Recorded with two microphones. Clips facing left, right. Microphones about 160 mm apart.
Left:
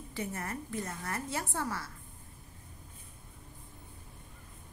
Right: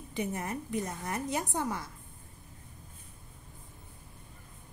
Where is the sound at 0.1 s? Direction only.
20° right (ahead or behind).